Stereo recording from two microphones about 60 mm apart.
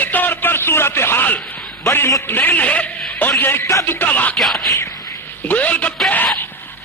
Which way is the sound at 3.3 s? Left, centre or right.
Left.